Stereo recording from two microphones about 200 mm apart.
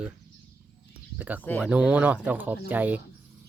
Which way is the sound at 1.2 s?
10° right (ahead or behind).